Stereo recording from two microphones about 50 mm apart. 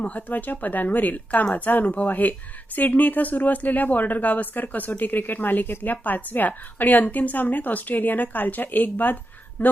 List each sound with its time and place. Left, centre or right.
0.0 s speech: left